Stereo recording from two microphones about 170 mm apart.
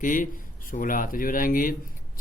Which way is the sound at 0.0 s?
50° left (ahead or behind).